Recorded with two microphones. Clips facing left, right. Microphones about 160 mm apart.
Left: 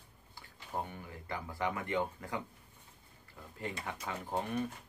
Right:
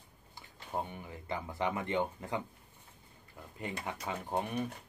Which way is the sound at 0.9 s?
20° right (ahead or behind).